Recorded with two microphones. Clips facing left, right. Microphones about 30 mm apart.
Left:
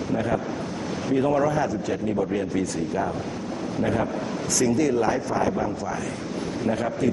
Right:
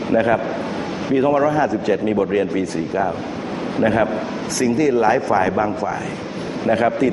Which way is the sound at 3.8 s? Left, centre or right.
Right.